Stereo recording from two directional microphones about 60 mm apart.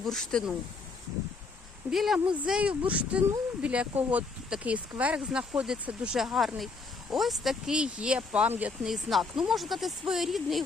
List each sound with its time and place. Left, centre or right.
0.0 s speech: centre
1.9 s speech: centre
2.1 s speech: centre
8.8 s speech: centre